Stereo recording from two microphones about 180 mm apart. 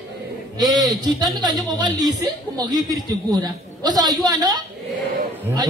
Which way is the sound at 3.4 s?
20° right (ahead or behind).